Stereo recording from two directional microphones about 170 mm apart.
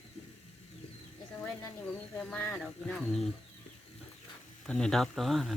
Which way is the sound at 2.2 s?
10° left (ahead or behind).